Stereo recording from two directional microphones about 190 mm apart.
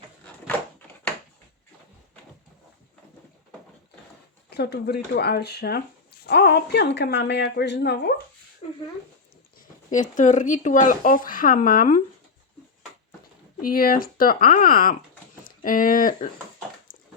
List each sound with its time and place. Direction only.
4.4 s speech: 60° left (ahead or behind)
9.6 s speech: 40° left (ahead or behind)
13.6 s speech: 50° left (ahead or behind)
16.9 s dog: 45° left (ahead or behind)